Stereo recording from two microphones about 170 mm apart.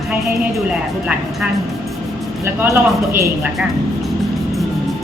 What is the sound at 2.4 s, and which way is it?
Speech, 15° right (ahead or behind).